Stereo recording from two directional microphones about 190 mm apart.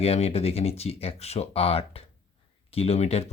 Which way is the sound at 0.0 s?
30° left (ahead or behind).